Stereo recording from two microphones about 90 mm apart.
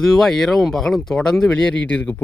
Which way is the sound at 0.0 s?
5° left (ahead or behind).